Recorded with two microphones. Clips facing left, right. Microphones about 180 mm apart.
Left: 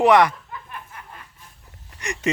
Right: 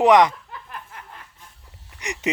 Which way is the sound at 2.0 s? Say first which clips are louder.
Left 1 dB; 20° right (ahead or behind).